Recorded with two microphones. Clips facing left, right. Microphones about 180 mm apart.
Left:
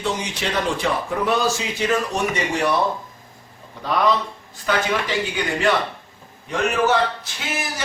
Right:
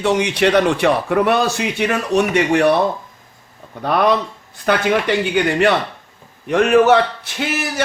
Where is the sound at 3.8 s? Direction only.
60° right (ahead or behind).